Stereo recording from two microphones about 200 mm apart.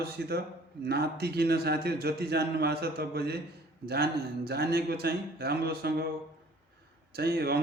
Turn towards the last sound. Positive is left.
turn(degrees=-50)  # may be behind; listen again after turning